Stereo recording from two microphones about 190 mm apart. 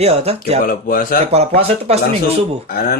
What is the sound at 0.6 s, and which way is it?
Speech, 50° left (ahead or behind).